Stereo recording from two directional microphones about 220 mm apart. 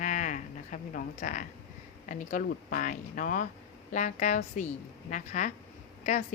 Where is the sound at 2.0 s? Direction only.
35° left (ahead or behind).